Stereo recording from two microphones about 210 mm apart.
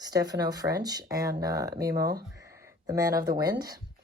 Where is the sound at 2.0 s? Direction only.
45° right (ahead or behind).